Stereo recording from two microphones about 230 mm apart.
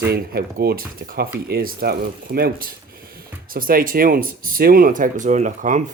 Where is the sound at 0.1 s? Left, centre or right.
Right.